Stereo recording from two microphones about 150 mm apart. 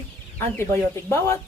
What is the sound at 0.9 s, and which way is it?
Speech, 15° left (ahead or behind).